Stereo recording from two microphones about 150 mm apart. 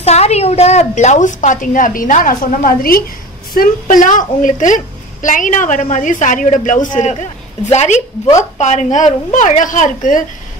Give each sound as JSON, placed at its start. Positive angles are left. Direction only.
{"t": 0.0, "sound": "a woman's voice", "side_deg": 45}